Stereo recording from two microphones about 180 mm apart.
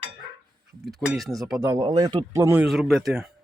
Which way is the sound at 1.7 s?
20° right (ahead or behind).